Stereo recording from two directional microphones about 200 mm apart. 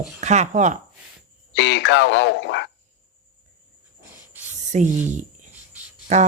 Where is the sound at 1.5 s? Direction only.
60° left (ahead or behind).